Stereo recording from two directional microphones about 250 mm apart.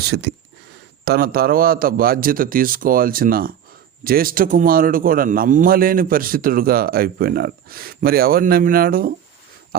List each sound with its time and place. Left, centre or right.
0.1 s a man's voice: right